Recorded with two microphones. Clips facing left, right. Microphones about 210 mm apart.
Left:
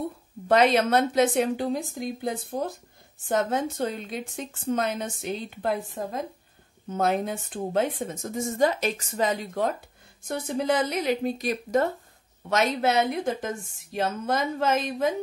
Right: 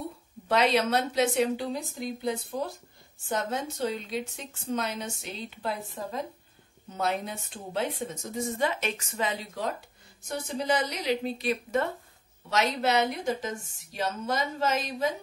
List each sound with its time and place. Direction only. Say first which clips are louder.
0.5 s a woman's voice: left 4 dB; 50° left (ahead or behind)
6.9 s a woman's voice: left 5 dB; 50° left (ahead or behind)
12.4 s a woman's voice: left 3 dB; 50° left (ahead or behind)